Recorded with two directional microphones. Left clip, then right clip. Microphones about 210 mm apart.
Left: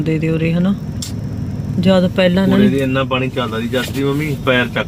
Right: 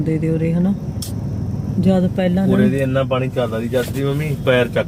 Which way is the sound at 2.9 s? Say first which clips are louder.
Left 1 dB; 40° right (ahead or behind).